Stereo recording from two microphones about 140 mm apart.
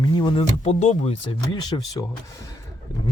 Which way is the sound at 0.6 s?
50° left (ahead or behind).